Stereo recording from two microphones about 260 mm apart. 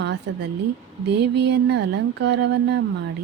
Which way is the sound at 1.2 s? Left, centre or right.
Right.